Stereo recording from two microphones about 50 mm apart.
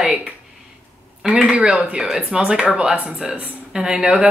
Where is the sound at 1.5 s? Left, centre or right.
Centre.